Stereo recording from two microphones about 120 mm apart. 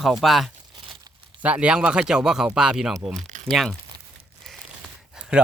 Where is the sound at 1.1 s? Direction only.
35° right (ahead or behind).